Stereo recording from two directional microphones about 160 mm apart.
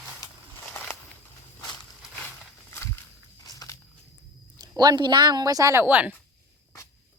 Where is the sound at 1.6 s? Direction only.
25° left (ahead or behind).